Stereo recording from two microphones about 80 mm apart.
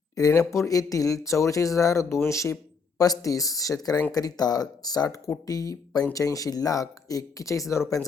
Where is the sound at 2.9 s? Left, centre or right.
Left.